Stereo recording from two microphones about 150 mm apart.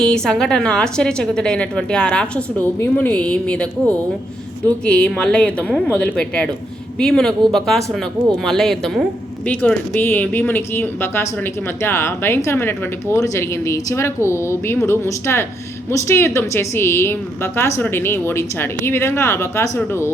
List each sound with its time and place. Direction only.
0.0 s a woman's voice: 5° left (ahead or behind)